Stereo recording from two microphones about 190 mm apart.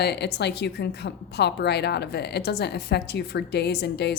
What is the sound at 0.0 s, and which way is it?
A woman's voice, 60° left (ahead or behind).